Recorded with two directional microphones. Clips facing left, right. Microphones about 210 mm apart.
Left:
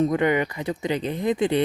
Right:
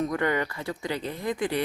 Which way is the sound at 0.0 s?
20° left (ahead or behind).